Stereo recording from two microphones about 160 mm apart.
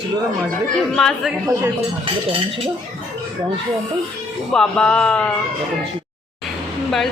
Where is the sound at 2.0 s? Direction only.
35° right (ahead or behind).